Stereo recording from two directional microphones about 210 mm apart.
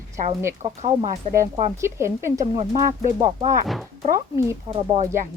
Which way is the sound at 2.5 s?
30° right (ahead or behind).